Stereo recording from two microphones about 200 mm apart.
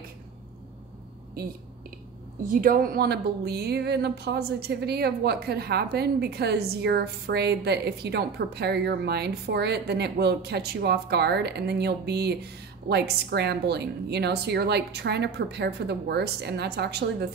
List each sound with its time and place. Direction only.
1.4 s speech: 50° right (ahead or behind)